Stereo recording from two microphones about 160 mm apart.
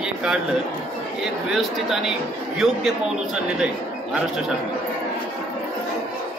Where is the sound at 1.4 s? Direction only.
5° right (ahead or behind).